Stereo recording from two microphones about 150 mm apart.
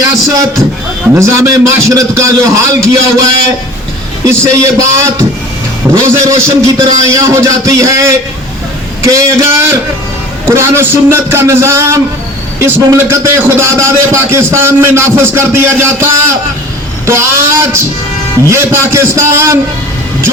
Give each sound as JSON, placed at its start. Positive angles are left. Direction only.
{"t": 0.3, "sound": "a man's voice", "side_deg": -20}
{"t": 4.3, "sound": "a man's voice", "side_deg": -20}
{"t": 17.1, "sound": "a man's voice", "side_deg": -15}